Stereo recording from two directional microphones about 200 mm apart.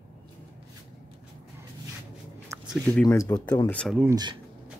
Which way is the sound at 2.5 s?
15° right (ahead or behind).